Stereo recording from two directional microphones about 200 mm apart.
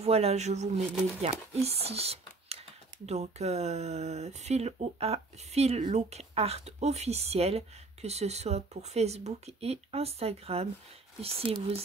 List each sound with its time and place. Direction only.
0.0 s speech: 30° right (ahead or behind)